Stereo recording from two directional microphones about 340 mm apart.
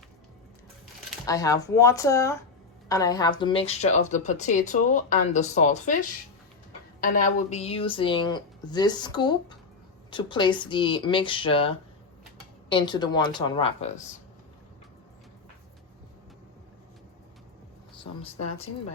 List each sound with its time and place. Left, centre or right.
1.2 s a woman's voice: centre
12.7 s a woman's voice: centre
17.9 s a sound: centre